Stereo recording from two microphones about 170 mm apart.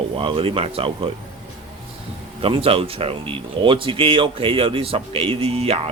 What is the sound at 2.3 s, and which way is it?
Speech, 35° right (ahead or behind).